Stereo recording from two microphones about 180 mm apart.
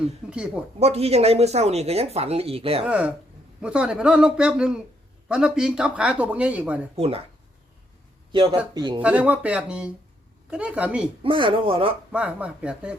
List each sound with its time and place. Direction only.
0.0 s speech: 5° right (ahead or behind)
0.8 s speech: 35° right (ahead or behind)
2.8 s speech: 5° right (ahead or behind)
6.9 s speech: 35° right (ahead or behind)
8.3 s speech: 25° right (ahead or behind)
9.0 s speech: 10° right (ahead or behind)
11.2 s speech: 30° right (ahead or behind)
12.1 s speech: 5° right (ahead or behind)